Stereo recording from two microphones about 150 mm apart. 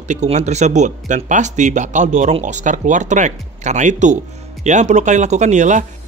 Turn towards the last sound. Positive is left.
turn(degrees=-55)  # may be behind; listen again after turning